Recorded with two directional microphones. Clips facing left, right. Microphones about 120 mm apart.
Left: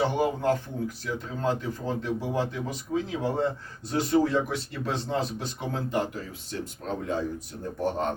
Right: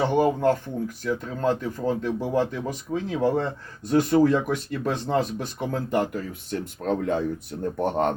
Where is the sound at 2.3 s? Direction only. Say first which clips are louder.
Right 4 dB; 50° right (ahead or behind).